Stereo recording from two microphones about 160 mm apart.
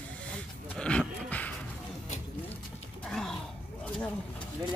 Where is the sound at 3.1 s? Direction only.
5° left (ahead or behind).